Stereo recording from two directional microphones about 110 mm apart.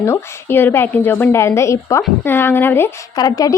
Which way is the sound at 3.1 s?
35° left (ahead or behind).